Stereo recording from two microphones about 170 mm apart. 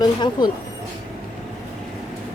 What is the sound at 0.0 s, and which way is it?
Speech, 25° left (ahead or behind).